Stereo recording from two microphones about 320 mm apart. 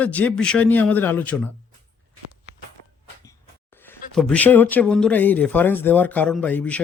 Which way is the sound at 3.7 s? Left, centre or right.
Centre.